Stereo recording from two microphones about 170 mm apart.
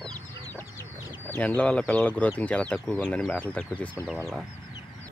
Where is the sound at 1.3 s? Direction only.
10° left (ahead or behind).